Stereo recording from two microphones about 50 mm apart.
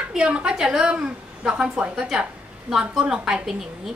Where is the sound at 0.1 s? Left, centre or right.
Right.